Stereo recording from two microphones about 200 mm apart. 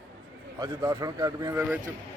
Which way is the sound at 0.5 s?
20° right (ahead or behind).